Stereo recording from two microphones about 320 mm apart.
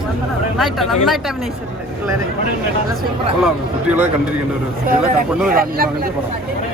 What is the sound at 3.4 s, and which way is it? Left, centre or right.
Speech, centre.